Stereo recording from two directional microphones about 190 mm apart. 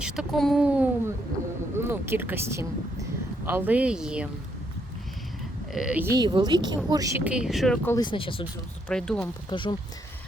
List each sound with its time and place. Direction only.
0.0 s speech: centre (ahead or behind)
5.7 s speech: 5° right (ahead or behind)
7.3 s speech: 5° right (ahead or behind)
7.9 s speech: 20° left (ahead or behind)
8.9 s speech: 5° left (ahead or behind)
9.5 s speech: 25° left (ahead or behind)